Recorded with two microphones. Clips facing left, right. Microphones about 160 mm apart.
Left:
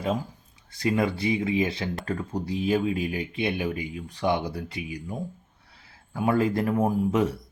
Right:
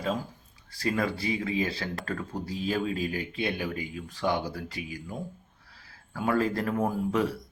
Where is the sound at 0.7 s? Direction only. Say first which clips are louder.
Left 4 dB; 20° left (ahead or behind).